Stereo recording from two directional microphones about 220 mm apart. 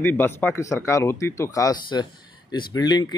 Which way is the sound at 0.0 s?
10° left (ahead or behind).